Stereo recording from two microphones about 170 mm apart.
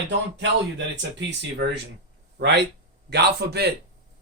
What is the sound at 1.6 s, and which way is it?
Speech, 90° right.